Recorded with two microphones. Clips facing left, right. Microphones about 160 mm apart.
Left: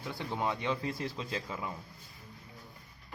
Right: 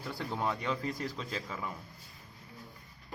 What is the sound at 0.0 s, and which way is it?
Speech, centre (ahead or behind).